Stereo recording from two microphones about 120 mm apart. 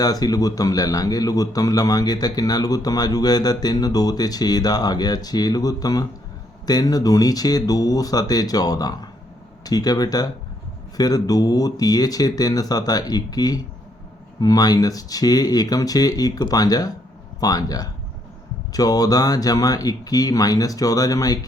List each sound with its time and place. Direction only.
0.0 s a man's voice: 30° left (ahead or behind)